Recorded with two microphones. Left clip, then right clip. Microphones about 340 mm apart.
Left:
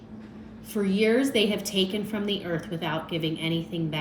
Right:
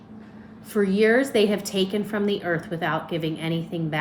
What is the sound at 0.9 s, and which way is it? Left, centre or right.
A woman's voice, right.